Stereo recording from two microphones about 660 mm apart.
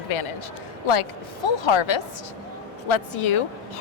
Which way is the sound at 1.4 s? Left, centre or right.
Left.